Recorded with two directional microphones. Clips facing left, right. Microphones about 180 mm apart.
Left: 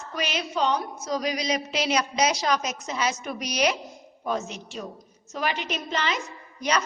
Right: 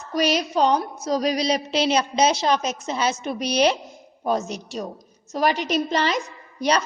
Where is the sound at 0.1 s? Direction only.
40° right (ahead or behind).